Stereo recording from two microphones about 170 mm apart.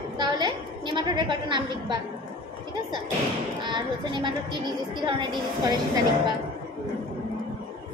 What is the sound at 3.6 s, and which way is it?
Speech, 25° right (ahead or behind).